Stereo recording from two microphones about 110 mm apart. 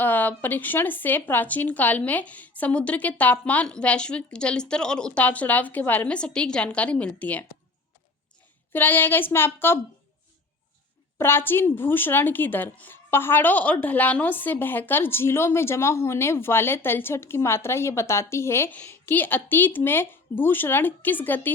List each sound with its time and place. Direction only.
0.0 s speech: 15° left (ahead or behind)
8.7 s a woman's voice: 20° left (ahead or behind)
11.2 s a woman's voice: 20° left (ahead or behind)